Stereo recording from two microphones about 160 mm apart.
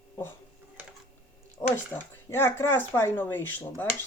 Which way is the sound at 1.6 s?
20° left (ahead or behind).